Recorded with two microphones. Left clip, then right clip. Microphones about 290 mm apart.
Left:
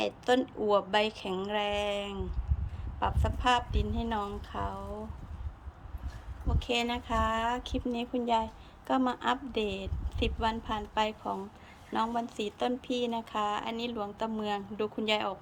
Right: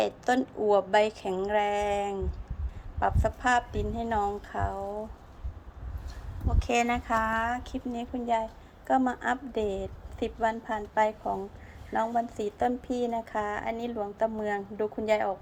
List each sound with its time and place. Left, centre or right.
0.0 s a woman's voice: centre
6.7 s a woman's voice: centre